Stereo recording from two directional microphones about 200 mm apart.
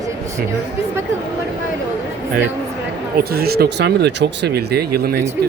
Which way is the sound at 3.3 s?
50° right (ahead or behind).